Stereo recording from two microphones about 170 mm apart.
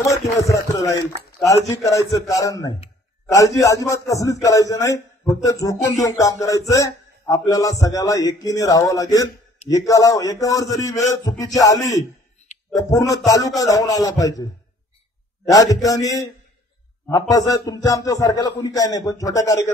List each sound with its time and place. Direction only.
0.0 s a man's voice: 20° left (ahead or behind)
15.5 s a man's voice: 20° left (ahead or behind)